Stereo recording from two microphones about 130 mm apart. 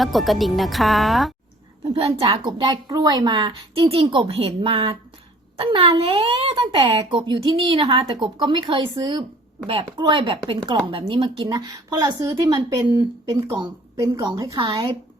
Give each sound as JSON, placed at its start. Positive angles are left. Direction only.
{"t": 0.0, "sound": "speech", "side_deg": 0}
{"t": 1.9, "sound": "speech", "side_deg": -50}
{"t": 2.4, "sound": "a woman's voice", "side_deg": -35}